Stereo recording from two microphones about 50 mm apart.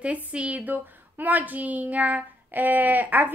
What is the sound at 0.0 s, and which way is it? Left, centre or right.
A woman's voice, right.